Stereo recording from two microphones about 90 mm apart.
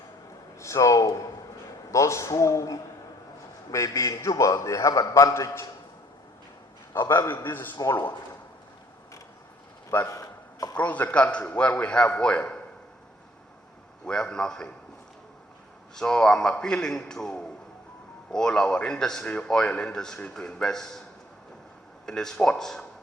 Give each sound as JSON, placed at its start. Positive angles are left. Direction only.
{"t": 0.6, "sound": "a man's voice", "side_deg": 35}
{"t": 6.9, "sound": "a man's voice", "side_deg": 25}
{"t": 10.1, "sound": "a sound", "side_deg": 40}
{"t": 10.8, "sound": "a man's voice", "side_deg": 15}
{"t": 14.0, "sound": "a man's voice", "side_deg": 10}
{"t": 16.0, "sound": "a man's voice", "side_deg": 5}
{"t": 22.0, "sound": "speech", "side_deg": 5}